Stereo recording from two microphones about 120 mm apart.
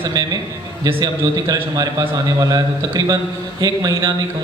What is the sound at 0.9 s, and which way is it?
Speech, 45° right (ahead or behind).